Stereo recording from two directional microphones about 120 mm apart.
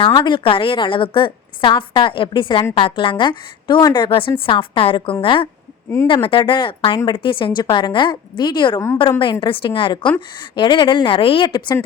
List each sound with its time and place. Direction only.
0.0 s a woman's voice: 40° left (ahead or behind)
11.4 s speech: 35° left (ahead or behind)